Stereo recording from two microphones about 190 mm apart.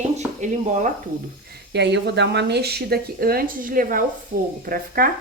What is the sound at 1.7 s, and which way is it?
A woman's voice, 65° right (ahead or behind).